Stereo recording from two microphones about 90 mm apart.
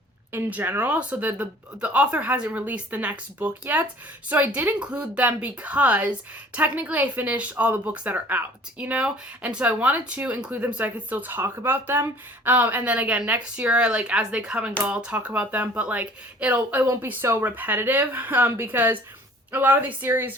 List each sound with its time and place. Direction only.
0.3 s a woman's voice: 25° right (ahead or behind)